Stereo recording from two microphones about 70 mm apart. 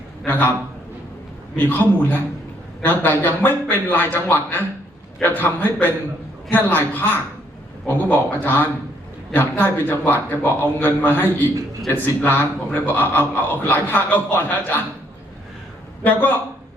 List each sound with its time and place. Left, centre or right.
0.3 s a man's voice: left
1.5 s a man's voice: left
16.0 s a man's voice: left